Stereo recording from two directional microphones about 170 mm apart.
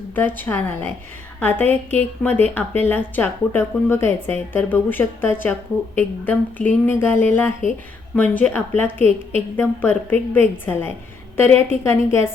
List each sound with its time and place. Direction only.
0.2 s speech: 10° left (ahead or behind)